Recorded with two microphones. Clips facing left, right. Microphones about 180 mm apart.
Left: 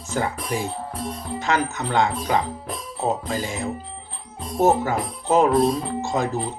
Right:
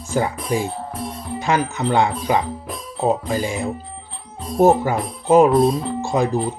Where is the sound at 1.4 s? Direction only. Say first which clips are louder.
Right 3 dB; 15° right (ahead or behind).